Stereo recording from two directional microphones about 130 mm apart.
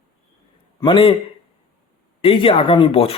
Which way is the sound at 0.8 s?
40° left (ahead or behind).